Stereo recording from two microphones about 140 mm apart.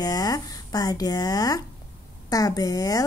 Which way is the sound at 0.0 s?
25° left (ahead or behind).